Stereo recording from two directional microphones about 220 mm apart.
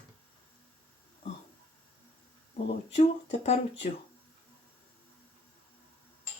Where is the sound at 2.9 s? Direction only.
30° left (ahead or behind).